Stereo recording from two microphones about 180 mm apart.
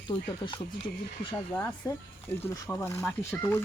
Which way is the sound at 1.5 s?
15° left (ahead or behind).